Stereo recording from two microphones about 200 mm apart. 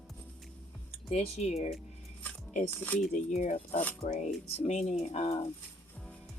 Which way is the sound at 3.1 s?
35° left (ahead or behind).